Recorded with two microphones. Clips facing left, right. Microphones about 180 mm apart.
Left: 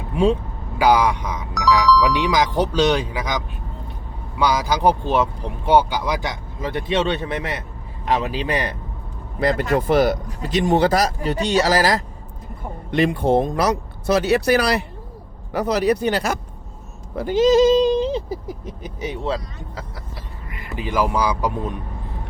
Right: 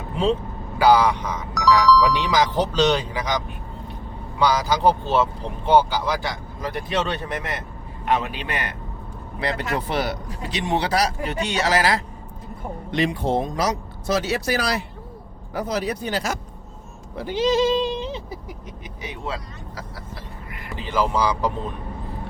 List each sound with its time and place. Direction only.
0.1 s vehicle: 10° left (ahead or behind)
0.8 s speech: 10° left (ahead or behind)
1.5 s speech: centre (ahead or behind)
2.3 s speech: 10° left (ahead or behind)
8.1 s speech: 35° left (ahead or behind)
9.4 s speech: 45° left (ahead or behind)
12.9 s speech: 55° left (ahead or behind)
17.2 s speech: 45° left (ahead or behind); by 19.8 s 30° left (ahead or behind)
20.7 s speech: 10° left (ahead or behind)